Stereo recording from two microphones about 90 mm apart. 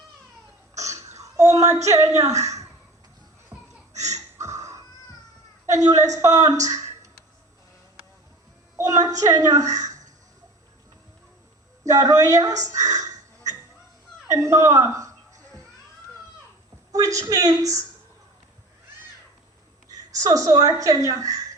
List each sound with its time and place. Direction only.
0.8 s a sound: 35° right (ahead or behind)
3.5 s laughter: 25° right (ahead or behind)
4.1 s gasp: 35° right (ahead or behind)
5.8 s a woman's voice: 40° right (ahead or behind)
8.8 s a woman's voice: 40° right (ahead or behind)
11.9 s a woman's voice: 40° right (ahead or behind)
14.3 s a sound: 35° right (ahead or behind)
16.9 s a woman's voice: 40° right (ahead or behind)
20.1 s a woman's voice: 40° right (ahead or behind)